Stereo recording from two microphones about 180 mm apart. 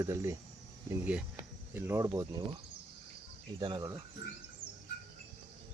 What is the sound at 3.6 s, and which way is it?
Speech, 25° right (ahead or behind).